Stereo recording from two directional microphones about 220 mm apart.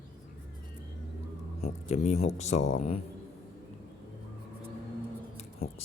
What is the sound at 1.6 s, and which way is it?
Speech, 30° left (ahead or behind).